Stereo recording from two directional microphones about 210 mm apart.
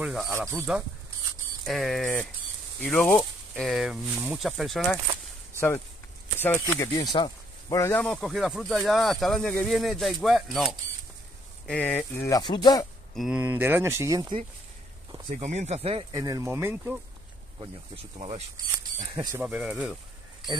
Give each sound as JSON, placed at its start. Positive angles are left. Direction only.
{"t": 0.0, "sound": "speech", "side_deg": -5}
{"t": 6.4, "sound": "speech", "side_deg": 10}
{"t": 12.3, "sound": "speech", "side_deg": 20}
{"t": 13.1, "sound": "speech", "side_deg": -5}
{"t": 15.3, "sound": "speech", "side_deg": -35}
{"t": 17.6, "sound": "speech", "side_deg": -25}
{"t": 19.3, "sound": "speech", "side_deg": -5}